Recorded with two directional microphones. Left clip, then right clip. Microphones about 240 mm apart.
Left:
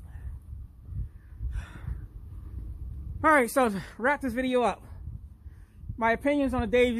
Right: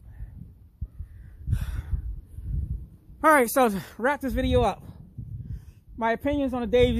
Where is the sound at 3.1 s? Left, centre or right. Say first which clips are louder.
Right 3 dB; right.